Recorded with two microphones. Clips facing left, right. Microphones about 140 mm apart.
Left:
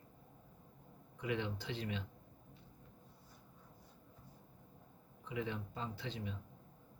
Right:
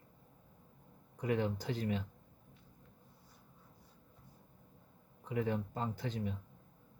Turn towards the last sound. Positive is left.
turn(degrees=-45)  # may be behind; listen again after turning